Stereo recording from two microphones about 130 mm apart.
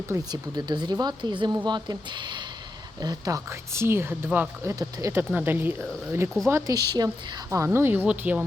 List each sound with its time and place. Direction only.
0.3 s a woman's voice: 35° right (ahead or behind); by 4.7 s 15° right (ahead or behind)
4.7 s a woman's voice: 25° right (ahead or behind)
6.5 s a woman's voice: 30° right (ahead or behind)